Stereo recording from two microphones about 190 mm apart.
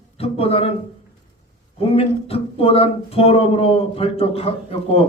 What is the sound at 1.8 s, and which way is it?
A man's voice, 30° left (ahead or behind).